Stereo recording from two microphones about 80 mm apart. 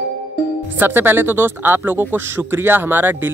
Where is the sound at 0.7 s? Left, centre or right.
Right.